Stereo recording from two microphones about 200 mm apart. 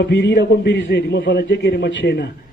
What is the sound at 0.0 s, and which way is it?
A man's voice, 60° left (ahead or behind).